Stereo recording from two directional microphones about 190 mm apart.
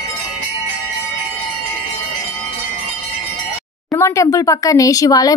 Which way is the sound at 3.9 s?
15° left (ahead or behind).